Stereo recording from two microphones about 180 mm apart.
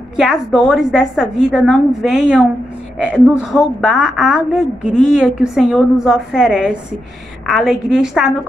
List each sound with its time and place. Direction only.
0.2 s a woman's voice: centre (ahead or behind)